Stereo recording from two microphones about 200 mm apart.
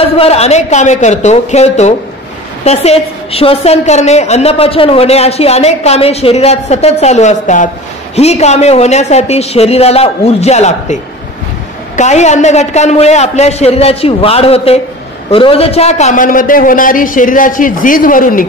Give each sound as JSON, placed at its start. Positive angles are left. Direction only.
{"t": 0.0, "sound": "a woman's voice", "side_deg": 30}
{"t": 12.0, "sound": "a woman's voice", "side_deg": 35}